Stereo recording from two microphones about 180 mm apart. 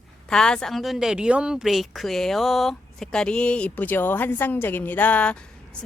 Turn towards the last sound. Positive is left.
turn(degrees=5)  # may be behind; listen again after turning